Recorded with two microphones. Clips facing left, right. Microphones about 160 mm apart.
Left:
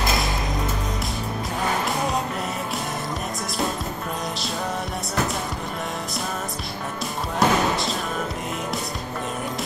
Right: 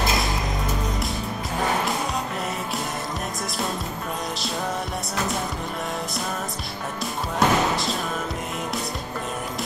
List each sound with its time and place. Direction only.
7.3 s music: centre (ahead or behind)